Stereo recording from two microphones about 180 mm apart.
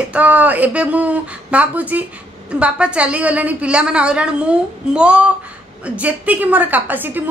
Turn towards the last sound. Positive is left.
turn(degrees=-10)  # may be behind; listen again after turning